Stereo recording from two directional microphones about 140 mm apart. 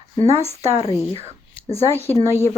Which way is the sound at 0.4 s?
45° left (ahead or behind).